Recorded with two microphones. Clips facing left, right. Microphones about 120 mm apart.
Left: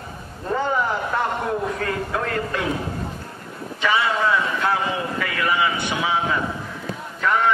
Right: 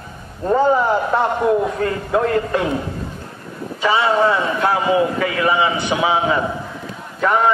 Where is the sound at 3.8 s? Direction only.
30° right (ahead or behind).